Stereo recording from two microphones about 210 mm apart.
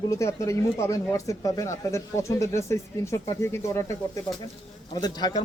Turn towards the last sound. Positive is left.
turn(degrees=20)  # may be behind; listen again after turning